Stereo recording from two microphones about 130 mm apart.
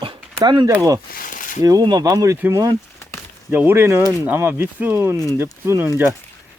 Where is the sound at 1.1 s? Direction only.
90° left.